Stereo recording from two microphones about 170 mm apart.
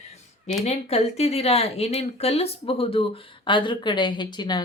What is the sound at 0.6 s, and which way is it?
Speech, 40° left (ahead or behind).